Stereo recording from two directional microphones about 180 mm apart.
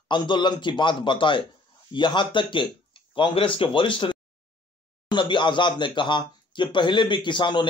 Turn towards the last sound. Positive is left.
turn(degrees=25)  # may be behind; listen again after turning